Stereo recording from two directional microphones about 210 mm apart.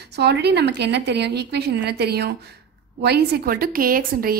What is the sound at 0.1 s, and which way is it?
A woman's voice, 50° right (ahead or behind).